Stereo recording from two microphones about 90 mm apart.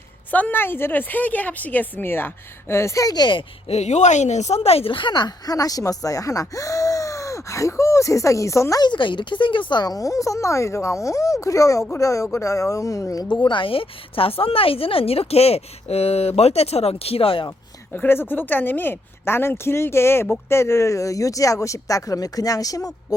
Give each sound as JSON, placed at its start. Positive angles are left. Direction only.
{"t": 0.3, "sound": "a woman's voice", "side_deg": 15}
{"t": 4.7, "sound": "speech", "side_deg": 85}
{"t": 8.8, "sound": "speech", "side_deg": 60}
{"t": 13.3, "sound": "speech", "side_deg": 60}
{"t": 17.9, "sound": "a woman's voice", "side_deg": 20}